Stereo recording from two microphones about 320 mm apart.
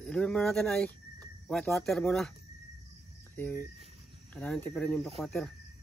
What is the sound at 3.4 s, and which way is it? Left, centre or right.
Cricket, centre.